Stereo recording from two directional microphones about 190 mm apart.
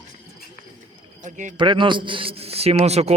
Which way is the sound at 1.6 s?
25° right (ahead or behind).